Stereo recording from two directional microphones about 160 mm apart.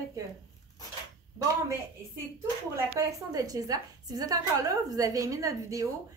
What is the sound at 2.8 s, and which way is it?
A woman's voice, 20° right (ahead or behind).